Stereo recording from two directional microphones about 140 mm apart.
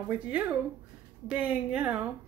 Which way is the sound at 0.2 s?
10° right (ahead or behind).